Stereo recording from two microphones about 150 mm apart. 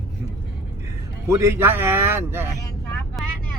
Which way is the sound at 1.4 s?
15° right (ahead or behind).